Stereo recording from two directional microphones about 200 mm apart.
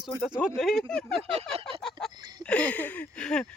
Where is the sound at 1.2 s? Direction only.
30° right (ahead or behind).